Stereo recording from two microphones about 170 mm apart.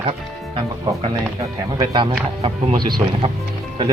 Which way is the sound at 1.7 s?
30° right (ahead or behind).